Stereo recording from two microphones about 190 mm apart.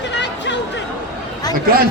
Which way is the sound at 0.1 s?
70° left (ahead or behind).